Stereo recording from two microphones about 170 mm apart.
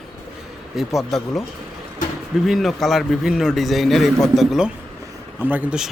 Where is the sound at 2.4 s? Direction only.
Centre (ahead or behind).